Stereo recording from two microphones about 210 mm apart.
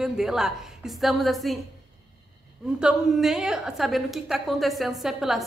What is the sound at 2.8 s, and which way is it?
A woman's voice, centre (ahead or behind).